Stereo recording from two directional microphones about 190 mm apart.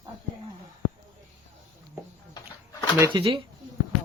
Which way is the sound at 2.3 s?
20° left (ahead or behind).